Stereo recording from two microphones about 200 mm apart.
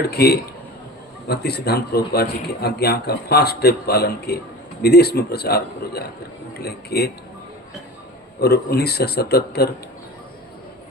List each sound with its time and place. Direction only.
0.1 s a man's voice: 55° left (ahead or behind)
8.4 s a man's voice: 55° left (ahead or behind)